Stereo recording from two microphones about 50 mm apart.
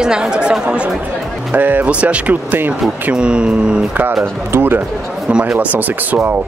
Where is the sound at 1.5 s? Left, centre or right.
Right; by 3.8 s centre.